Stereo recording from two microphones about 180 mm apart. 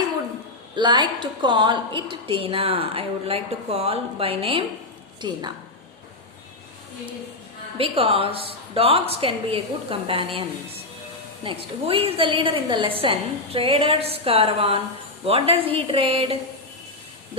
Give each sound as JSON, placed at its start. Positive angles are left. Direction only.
{"t": 0.8, "sound": "a woman's voice", "side_deg": -25}
{"t": 7.8, "sound": "a woman's voice", "side_deg": -30}
{"t": 11.4, "sound": "a woman's voice", "side_deg": -30}